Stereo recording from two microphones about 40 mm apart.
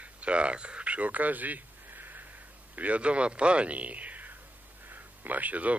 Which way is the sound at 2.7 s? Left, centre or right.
Right.